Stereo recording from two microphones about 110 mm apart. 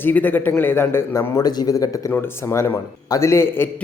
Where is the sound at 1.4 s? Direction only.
35° left (ahead or behind).